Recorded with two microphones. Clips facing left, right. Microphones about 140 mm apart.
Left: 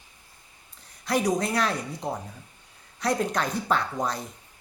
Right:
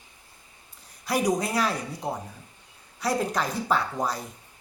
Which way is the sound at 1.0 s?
10° right (ahead or behind).